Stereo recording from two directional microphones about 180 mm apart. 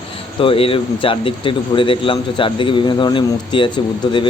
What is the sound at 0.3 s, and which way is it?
Speech, 30° left (ahead or behind).